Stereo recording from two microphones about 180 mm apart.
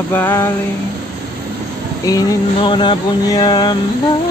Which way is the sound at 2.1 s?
25° left (ahead or behind).